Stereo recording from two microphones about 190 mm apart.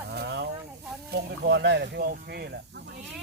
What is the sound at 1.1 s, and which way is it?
Speech, 60° right (ahead or behind).